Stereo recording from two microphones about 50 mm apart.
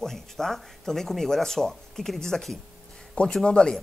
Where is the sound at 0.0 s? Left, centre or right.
Centre.